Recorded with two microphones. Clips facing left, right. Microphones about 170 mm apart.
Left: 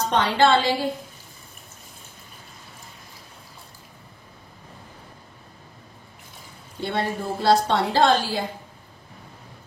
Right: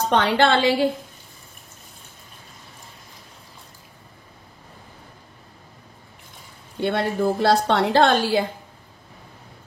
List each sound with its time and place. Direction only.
0.1 s a woman's voice: 60° right (ahead or behind)
6.8 s a woman's voice: 70° right (ahead or behind)